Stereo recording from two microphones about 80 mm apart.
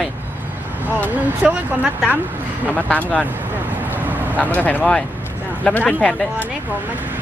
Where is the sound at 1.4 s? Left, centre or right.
Centre.